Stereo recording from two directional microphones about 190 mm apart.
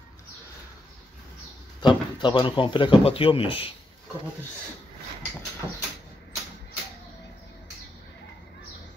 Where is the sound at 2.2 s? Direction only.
25° left (ahead or behind).